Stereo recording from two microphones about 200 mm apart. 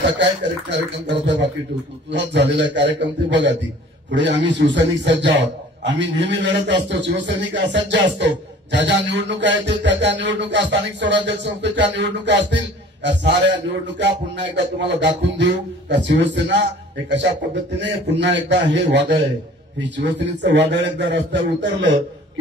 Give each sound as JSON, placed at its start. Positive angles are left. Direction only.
{"t": 0.2, "sound": "speech", "side_deg": -60}
{"t": 17.7, "sound": "speech", "side_deg": -60}
{"t": 20.2, "sound": "speech", "side_deg": -60}